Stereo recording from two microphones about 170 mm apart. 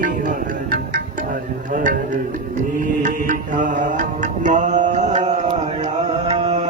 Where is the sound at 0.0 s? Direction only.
50° right (ahead or behind).